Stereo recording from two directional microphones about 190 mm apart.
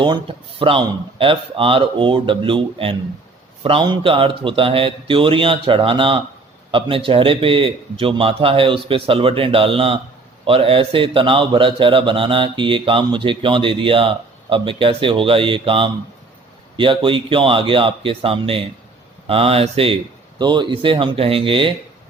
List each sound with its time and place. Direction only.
0.0 s a man's voice: 25° right (ahead or behind)